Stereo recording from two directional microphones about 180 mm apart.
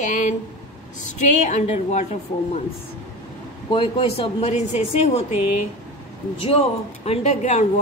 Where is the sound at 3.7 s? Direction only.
30° left (ahead or behind).